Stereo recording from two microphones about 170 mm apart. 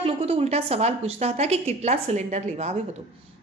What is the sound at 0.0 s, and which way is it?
A woman's voice, 40° right (ahead or behind).